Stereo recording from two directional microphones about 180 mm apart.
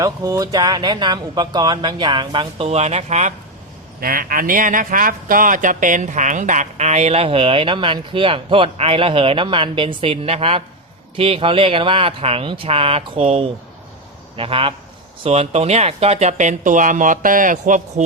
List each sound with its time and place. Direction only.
0.0 s speech: 20° right (ahead or behind); by 3.3 s 40° right (ahead or behind)
4.0 s speech: 50° right (ahead or behind)